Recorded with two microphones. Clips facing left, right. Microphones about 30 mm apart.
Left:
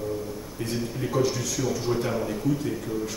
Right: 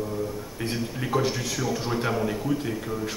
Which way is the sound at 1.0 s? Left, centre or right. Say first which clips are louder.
Even; right.